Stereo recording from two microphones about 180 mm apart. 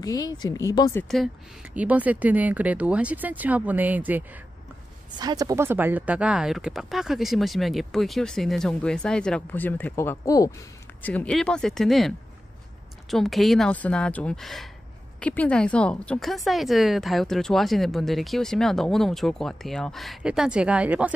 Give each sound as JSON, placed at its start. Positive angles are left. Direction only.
{"t": 0.0, "sound": "speech", "side_deg": 20}
{"t": 1.0, "sound": "speech", "side_deg": 0}
{"t": 5.2, "sound": "speech", "side_deg": -20}
{"t": 13.1, "sound": "speech", "side_deg": 0}